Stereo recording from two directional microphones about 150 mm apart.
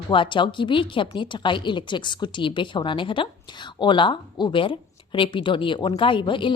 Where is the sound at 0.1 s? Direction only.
35° left (ahead or behind).